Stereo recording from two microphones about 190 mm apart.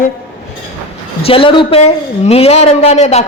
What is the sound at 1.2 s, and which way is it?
A man's voice, 30° left (ahead or behind).